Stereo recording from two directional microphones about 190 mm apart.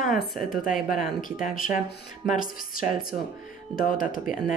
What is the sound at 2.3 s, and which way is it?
Speech, 45° left (ahead or behind).